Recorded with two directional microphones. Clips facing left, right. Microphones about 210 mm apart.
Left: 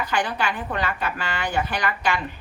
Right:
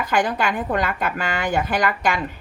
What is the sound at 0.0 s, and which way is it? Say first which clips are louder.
A woman's voice: right 4 dB; 50° right (ahead or behind).